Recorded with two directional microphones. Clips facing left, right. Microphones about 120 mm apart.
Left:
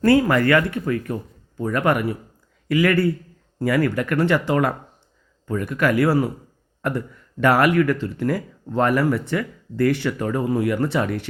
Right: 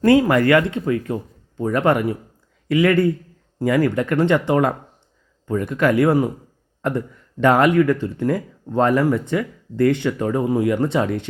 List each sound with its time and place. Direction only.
0.0 s speech: 20° right (ahead or behind)